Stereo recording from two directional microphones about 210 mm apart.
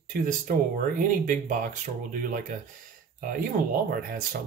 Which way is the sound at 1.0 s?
40° right (ahead or behind).